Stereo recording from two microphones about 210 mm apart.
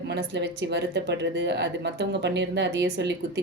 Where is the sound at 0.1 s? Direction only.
55° right (ahead or behind).